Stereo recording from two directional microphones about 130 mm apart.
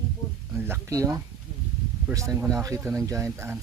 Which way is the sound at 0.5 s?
20° right (ahead or behind).